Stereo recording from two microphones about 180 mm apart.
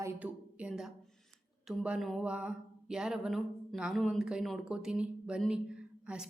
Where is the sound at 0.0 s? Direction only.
10° right (ahead or behind).